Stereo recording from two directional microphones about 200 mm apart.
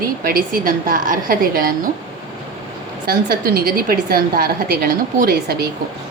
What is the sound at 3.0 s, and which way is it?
A woman's voice, 45° right (ahead or behind).